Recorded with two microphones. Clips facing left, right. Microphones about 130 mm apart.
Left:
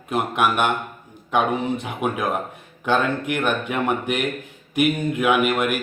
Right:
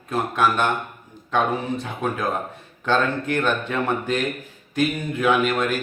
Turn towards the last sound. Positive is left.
turn(degrees=10)  # may be behind; listen again after turning